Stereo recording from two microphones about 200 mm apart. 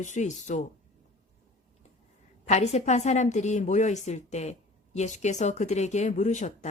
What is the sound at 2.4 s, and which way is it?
Speech, 35° left (ahead or behind).